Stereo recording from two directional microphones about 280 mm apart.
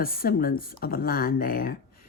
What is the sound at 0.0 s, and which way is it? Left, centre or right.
Speech, left.